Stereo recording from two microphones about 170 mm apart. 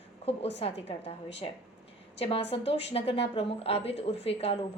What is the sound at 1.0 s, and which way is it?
Speech, 90° left.